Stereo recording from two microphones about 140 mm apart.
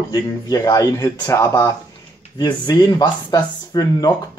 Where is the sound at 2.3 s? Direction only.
30° left (ahead or behind).